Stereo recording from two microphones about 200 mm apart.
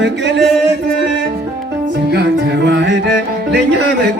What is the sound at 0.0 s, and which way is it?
Music, 60° right (ahead or behind).